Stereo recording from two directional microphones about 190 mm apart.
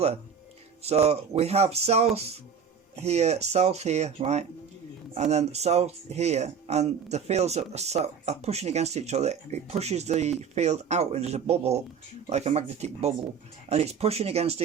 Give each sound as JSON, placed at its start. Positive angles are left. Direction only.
{"t": 0.8, "sound": "speech", "side_deg": -35}